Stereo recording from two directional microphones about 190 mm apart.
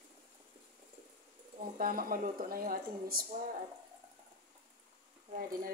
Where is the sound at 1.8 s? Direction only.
50° right (ahead or behind).